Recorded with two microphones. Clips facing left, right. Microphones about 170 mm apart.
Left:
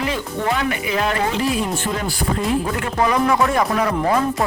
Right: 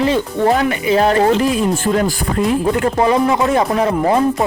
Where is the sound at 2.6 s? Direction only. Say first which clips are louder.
Right 6 dB; 30° right (ahead or behind).